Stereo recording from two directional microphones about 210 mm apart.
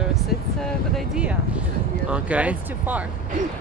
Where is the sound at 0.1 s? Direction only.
Centre (ahead or behind).